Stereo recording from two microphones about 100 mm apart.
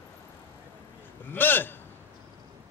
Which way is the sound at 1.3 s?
20° left (ahead or behind).